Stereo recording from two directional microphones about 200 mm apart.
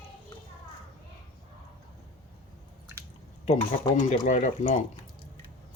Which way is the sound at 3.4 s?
35° left (ahead or behind).